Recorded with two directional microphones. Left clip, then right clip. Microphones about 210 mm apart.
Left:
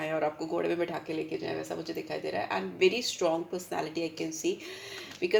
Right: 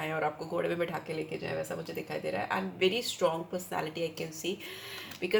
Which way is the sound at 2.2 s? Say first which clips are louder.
Even; 35° left (ahead or behind).